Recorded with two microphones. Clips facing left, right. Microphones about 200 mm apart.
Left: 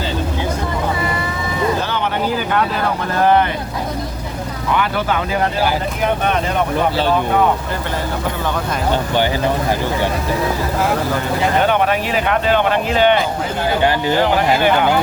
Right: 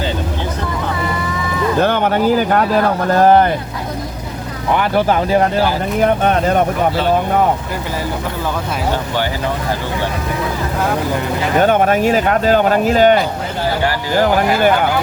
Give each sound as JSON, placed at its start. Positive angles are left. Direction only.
{"t": 1.8, "sound": "speech", "side_deg": -50}
{"t": 4.7, "sound": "speech", "side_deg": -40}
{"t": 11.6, "sound": "speech", "side_deg": -45}